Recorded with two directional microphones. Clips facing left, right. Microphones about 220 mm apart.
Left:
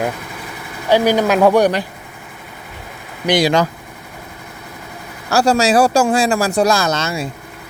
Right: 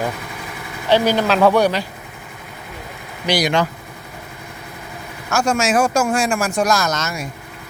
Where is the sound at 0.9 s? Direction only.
10° left (ahead or behind).